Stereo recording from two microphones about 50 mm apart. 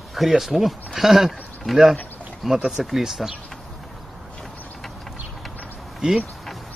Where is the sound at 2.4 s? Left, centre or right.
Centre.